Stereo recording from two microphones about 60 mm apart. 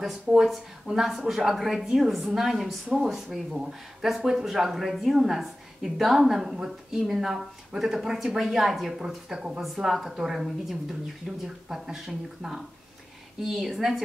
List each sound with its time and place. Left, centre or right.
0.3 s speech: centre